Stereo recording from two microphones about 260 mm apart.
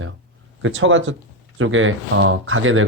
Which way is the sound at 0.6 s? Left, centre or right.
Right.